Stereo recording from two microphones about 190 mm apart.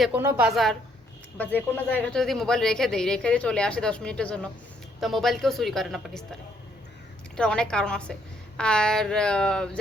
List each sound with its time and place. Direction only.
0.0 s a woman's voice: 10° right (ahead or behind)
0.4 s speech: centre (ahead or behind)
7.3 s speech: 5° left (ahead or behind)